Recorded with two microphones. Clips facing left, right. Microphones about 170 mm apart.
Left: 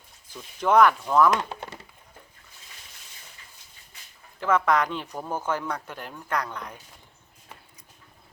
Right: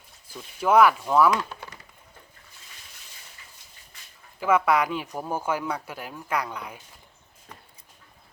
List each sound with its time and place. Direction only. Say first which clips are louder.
0.3 s speech: right 1 dB; 5° right (ahead or behind)
1.5 s a sound: left 4 dB; 25° left (ahead or behind)
4.4 s speech: right 1 dB; 10° right (ahead or behind)